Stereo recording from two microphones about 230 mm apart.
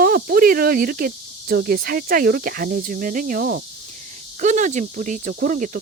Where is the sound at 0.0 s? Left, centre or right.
Right.